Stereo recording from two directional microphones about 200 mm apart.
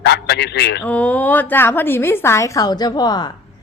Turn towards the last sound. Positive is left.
turn(degrees=20)  # may be behind; listen again after turning